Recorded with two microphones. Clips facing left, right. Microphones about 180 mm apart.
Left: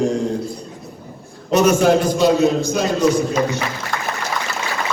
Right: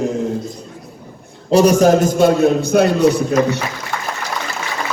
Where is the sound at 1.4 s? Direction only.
35° right (ahead or behind); by 3.1 s 60° right (ahead or behind).